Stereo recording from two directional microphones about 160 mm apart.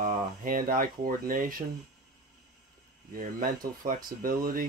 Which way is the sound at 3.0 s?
60° right (ahead or behind).